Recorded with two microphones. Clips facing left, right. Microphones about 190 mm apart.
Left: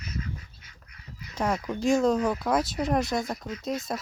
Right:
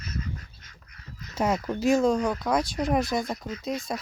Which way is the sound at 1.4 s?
5° right (ahead or behind).